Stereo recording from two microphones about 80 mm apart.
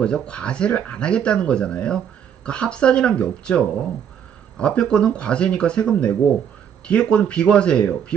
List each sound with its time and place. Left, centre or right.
0.0 s speech: centre